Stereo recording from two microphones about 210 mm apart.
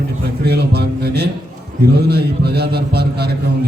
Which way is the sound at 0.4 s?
50° right (ahead or behind).